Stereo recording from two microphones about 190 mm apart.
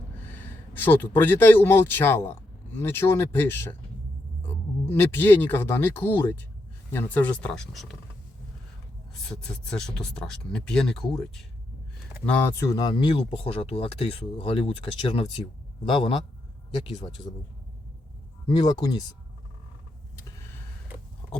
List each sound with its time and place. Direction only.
0.2 s a sound: 10° left (ahead or behind)
1.1 s speech: 10° left (ahead or behind)
9.4 s speech: 5° left (ahead or behind); by 17.3 s 25° left (ahead or behind)
18.4 s speech: 20° left (ahead or behind)